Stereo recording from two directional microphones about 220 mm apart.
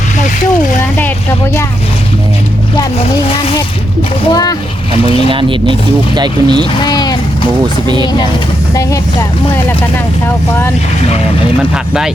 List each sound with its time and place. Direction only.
4.3 s a child's voice: 15° left (ahead or behind)
5.3 s speech: 25° right (ahead or behind)
6.7 s speech: 20° left (ahead or behind)